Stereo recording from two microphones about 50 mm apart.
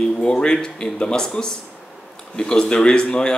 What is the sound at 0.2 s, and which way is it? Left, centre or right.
Speech, centre.